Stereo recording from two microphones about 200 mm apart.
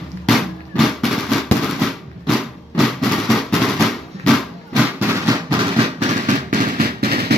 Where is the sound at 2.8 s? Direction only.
Centre (ahead or behind).